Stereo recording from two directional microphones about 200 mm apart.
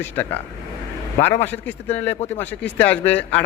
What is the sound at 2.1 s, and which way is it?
Speech, 35° left (ahead or behind).